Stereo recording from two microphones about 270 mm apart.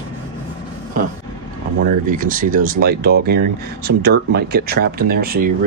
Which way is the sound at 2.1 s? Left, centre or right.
Right.